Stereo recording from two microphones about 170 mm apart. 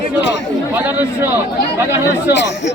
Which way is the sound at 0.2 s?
90° left.